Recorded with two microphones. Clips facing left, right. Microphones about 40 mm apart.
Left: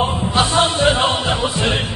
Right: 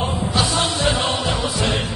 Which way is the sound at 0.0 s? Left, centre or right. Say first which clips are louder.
Left 4 dB; left.